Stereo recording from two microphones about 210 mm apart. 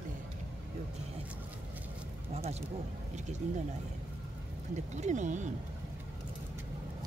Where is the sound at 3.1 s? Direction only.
35° right (ahead or behind).